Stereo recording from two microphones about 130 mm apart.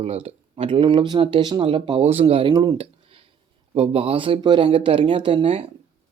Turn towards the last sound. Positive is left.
turn(degrees=-45)  # may be behind; listen again after turning